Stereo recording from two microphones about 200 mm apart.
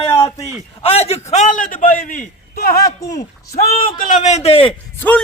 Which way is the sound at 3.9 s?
40° left (ahead or behind).